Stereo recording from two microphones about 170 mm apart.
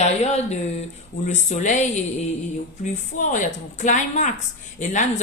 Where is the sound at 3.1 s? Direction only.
45° left (ahead or behind).